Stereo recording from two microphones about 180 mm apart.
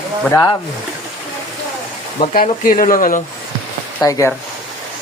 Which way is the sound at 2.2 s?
45° left (ahead or behind).